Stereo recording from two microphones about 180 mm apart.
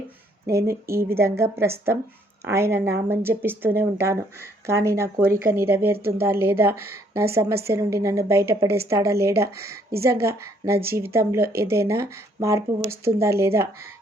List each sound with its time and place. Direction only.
0.5 s speech: 15° right (ahead or behind)